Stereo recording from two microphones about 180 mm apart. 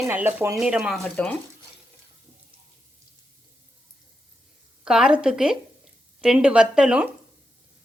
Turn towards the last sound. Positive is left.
turn(degrees=-5)  # may be behind; listen again after turning